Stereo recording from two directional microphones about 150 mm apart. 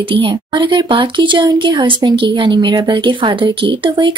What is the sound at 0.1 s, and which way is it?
Speech, 35° right (ahead or behind).